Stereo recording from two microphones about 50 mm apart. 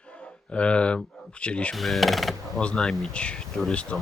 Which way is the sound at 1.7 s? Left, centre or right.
Centre.